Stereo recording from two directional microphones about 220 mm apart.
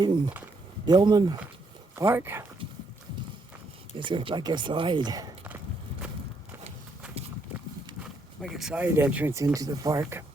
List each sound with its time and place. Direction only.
0.0 s speech: 20° right (ahead or behind)
3.9 s speech: 20° right (ahead or behind)
8.4 s speech: centre (ahead or behind)